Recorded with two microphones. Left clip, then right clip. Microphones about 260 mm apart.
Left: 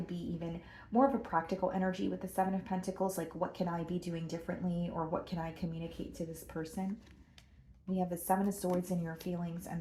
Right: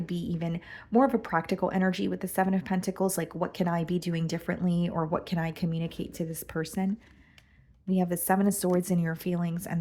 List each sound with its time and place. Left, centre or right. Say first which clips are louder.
0.0 s speech: right 7 dB; right
7.9 s speech: right 6 dB; right